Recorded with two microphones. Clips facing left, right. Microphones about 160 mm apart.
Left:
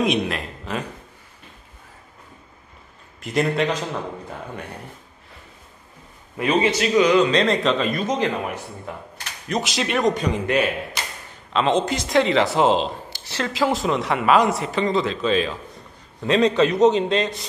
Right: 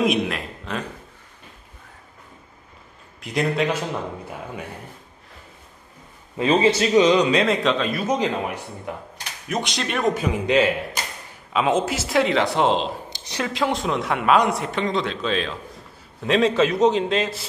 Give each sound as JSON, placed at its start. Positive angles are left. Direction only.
{"t": 0.0, "sound": "a man's voice", "side_deg": 0}
{"t": 3.2, "sound": "a man's voice", "side_deg": 0}
{"t": 6.3, "sound": "a man's voice", "side_deg": -25}
{"t": 7.2, "sound": "a man's voice", "side_deg": -5}
{"t": 9.5, "sound": "a man's voice", "side_deg": 0}
{"t": 10.4, "sound": "a man's voice", "side_deg": -20}
{"t": 11.5, "sound": "a man's voice", "side_deg": -5}
{"t": 13.1, "sound": "a sound", "side_deg": -15}
{"t": 13.5, "sound": "a man's voice", "side_deg": 0}